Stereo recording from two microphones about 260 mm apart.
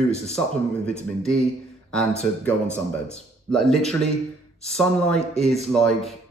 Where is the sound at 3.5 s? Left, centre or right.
Centre.